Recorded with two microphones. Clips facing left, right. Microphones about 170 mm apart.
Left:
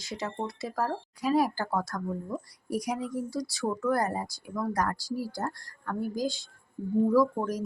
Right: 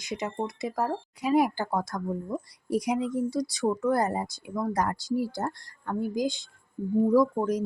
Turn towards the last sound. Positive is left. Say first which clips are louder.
# right 2 dB
turn(degrees=-20)  # may be behind; listen again after turning